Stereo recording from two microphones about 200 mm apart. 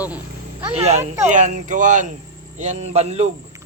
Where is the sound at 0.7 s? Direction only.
30° right (ahead or behind).